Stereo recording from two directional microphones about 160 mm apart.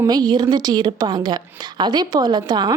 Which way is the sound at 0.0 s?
25° right (ahead or behind).